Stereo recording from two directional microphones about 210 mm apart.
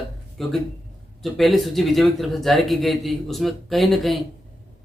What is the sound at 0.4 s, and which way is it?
Speech, centre (ahead or behind).